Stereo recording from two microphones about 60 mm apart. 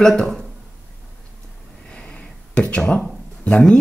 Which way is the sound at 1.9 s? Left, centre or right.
Centre.